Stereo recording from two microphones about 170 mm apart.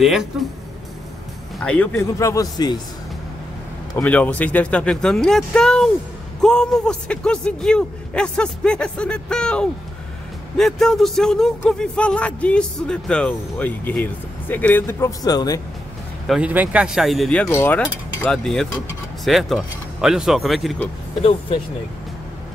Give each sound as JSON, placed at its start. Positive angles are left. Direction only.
{"t": 0.0, "sound": "a man's voice", "side_deg": 0}
{"t": 1.6, "sound": "speech", "side_deg": 10}
{"t": 3.9, "sound": "a man's voice", "side_deg": 10}
{"t": 16.3, "sound": "a man's voice", "side_deg": -10}
{"t": 17.5, "sound": "a man's voice", "side_deg": 15}
{"t": 21.2, "sound": "speech", "side_deg": 35}